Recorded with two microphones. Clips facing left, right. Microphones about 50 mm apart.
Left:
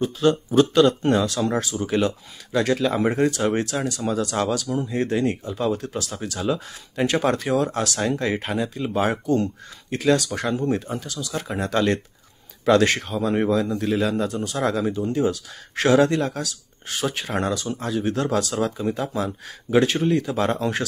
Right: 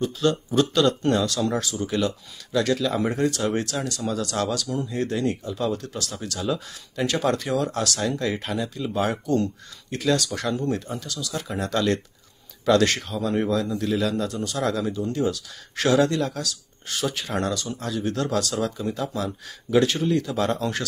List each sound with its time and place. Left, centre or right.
0.0 s speech: centre